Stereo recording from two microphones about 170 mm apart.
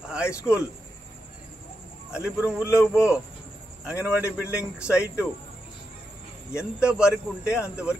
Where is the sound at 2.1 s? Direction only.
5° right (ahead or behind).